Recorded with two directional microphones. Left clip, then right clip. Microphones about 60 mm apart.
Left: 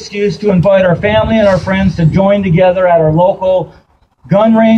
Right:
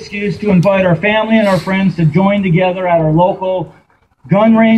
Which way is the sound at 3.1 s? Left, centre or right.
Left.